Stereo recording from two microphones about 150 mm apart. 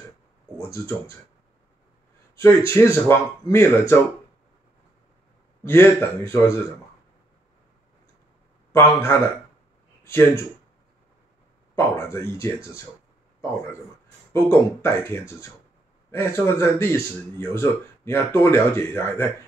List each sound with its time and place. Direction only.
0.7 s speech: 20° left (ahead or behind)
2.3 s a man's voice: 20° left (ahead or behind)
5.6 s a man's voice: 15° left (ahead or behind)
8.7 s a man's voice: 20° left (ahead or behind)
11.7 s speech: 20° left (ahead or behind)
14.3 s a man's voice: 15° left (ahead or behind)